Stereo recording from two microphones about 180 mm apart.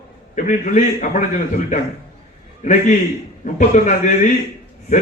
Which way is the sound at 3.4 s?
40° left (ahead or behind).